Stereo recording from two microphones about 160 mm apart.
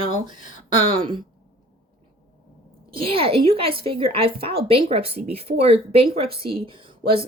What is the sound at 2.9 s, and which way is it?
Speech, 35° right (ahead or behind).